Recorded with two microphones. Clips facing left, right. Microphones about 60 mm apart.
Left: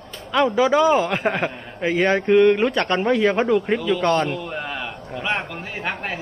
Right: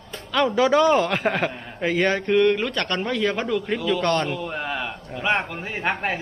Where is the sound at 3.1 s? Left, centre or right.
Left.